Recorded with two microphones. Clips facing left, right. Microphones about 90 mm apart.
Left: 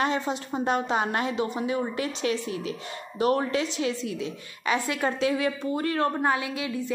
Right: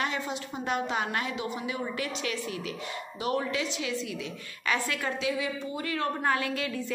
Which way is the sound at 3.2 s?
45° left (ahead or behind).